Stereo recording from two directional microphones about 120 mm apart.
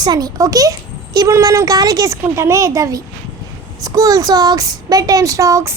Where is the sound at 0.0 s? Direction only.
35° right (ahead or behind).